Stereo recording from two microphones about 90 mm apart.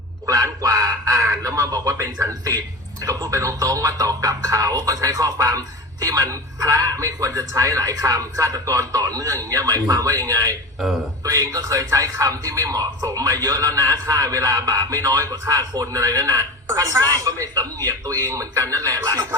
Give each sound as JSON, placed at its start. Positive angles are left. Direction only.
{"t": 0.6, "sound": "quack", "side_deg": -45}
{"t": 1.5, "sound": "speech", "side_deg": -45}